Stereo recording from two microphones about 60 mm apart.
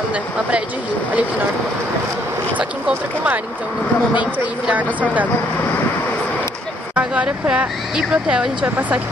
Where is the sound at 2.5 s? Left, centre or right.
Right.